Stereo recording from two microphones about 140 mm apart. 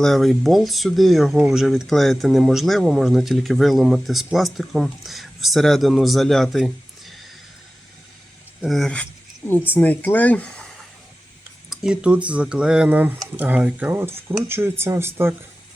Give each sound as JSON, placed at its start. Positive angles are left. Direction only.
{"t": 0.0, "sound": "speech", "side_deg": 0}
{"t": 8.6, "sound": "speech", "side_deg": 0}
{"t": 11.7, "sound": "speech", "side_deg": -5}